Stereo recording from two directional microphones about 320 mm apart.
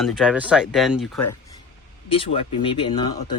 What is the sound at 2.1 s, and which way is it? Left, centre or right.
Speech, centre.